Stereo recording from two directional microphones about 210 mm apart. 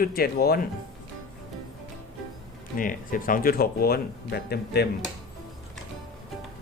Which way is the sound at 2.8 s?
40° left (ahead or behind).